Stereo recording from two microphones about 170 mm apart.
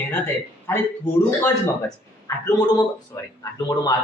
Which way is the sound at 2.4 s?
25° left (ahead or behind).